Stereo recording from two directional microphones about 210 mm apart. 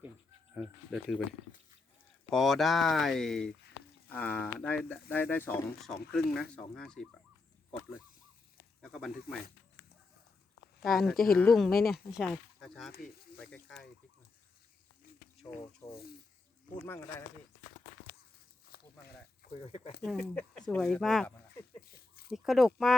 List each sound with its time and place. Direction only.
0.5 s speech: centre (ahead or behind)
2.3 s speech: centre (ahead or behind)
8.8 s speech: centre (ahead or behind)
10.8 s speech: centre (ahead or behind)
15.8 s speech: 25° left (ahead or behind)
16.8 s speech: 10° left (ahead or behind)
18.7 s a sound: 45° left (ahead or behind)
19.5 s speech: 30° left (ahead or behind)
20.0 s speech: centre (ahead or behind)
21.8 s a sound: 45° left (ahead or behind)
22.3 s speech: centre (ahead or behind)